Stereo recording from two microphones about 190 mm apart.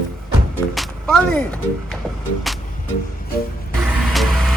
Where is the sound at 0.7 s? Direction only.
Centre (ahead or behind).